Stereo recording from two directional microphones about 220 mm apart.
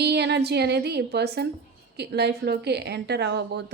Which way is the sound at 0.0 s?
50° right (ahead or behind).